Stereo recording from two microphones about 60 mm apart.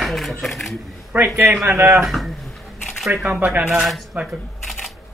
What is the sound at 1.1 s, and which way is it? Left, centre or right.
Speech, right.